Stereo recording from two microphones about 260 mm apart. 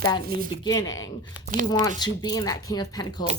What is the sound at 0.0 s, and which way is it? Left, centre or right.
A woman's voice, centre.